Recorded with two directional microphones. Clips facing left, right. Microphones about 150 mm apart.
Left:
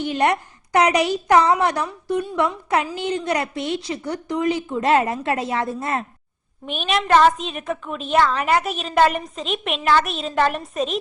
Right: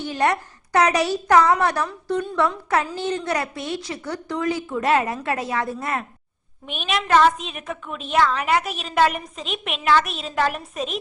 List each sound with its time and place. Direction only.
0.0 s a woman's voice: 20° left (ahead or behind)
6.7 s a woman's voice: centre (ahead or behind)